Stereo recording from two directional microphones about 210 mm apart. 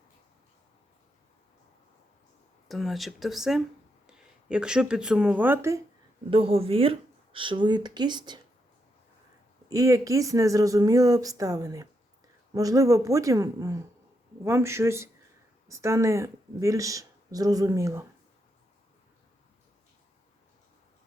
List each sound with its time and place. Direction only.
2.6 s speech: centre (ahead or behind)
6.3 s speech: 25° right (ahead or behind)
9.6 s speech: 15° right (ahead or behind)